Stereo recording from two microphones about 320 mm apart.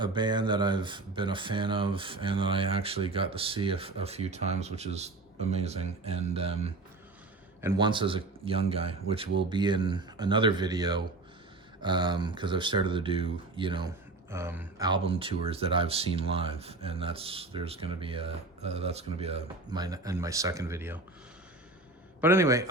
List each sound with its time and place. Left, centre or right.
0.0 s speech: centre
22.2 s speech: centre